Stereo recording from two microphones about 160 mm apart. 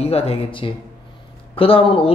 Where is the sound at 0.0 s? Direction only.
40° left (ahead or behind).